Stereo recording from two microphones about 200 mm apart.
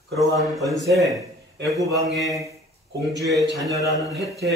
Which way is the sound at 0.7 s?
Centre (ahead or behind).